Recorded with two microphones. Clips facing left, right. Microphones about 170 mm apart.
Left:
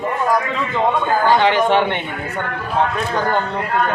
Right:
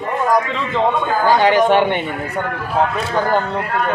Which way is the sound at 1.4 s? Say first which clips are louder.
Right 2 dB; 10° right (ahead or behind).